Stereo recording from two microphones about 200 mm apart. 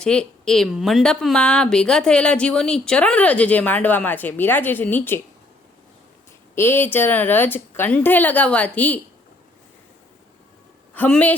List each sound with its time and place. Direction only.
0.0 s a woman's voice: 5° left (ahead or behind)
6.6 s a woman's voice: 10° left (ahead or behind)
10.9 s a woman's voice: 10° left (ahead or behind)